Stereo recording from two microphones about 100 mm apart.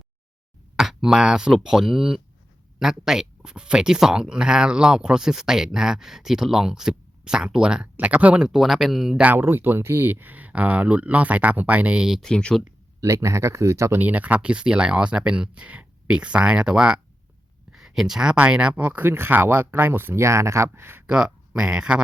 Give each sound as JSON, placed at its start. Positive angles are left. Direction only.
{"t": 0.8, "sound": "speech", "side_deg": -5}
{"t": 9.2, "sound": "speech", "side_deg": -20}
{"t": 12.3, "sound": "speech", "side_deg": 10}
{"t": 13.0, "sound": "speech", "side_deg": -30}
{"t": 14.0, "sound": "speech", "side_deg": -15}
{"t": 21.1, "sound": "speech", "side_deg": -10}